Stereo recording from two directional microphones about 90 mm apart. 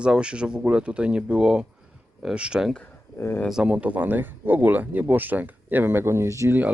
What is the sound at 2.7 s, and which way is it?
Speech, 15° left (ahead or behind).